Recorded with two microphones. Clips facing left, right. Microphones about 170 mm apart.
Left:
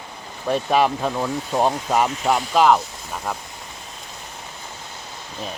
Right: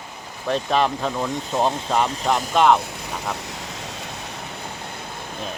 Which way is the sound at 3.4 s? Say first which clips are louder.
Right 5 dB; 90° right.